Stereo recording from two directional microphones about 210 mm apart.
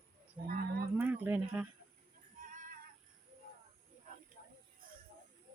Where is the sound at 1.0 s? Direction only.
10° right (ahead or behind).